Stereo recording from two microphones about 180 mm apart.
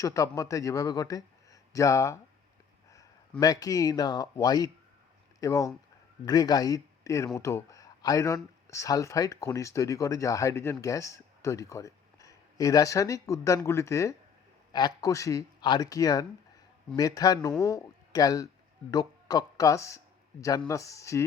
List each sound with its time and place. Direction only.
0.0 s a man's voice: 20° left (ahead or behind)
3.4 s speech: 20° left (ahead or behind)